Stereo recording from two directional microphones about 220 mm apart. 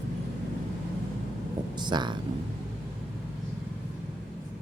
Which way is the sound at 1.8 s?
20° right (ahead or behind).